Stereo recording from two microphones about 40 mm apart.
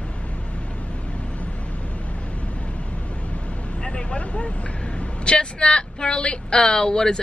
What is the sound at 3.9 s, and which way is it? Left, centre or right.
Vehicle, left.